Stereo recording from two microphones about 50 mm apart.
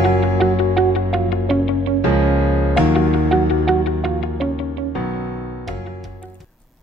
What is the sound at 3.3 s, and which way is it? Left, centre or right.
Music, centre.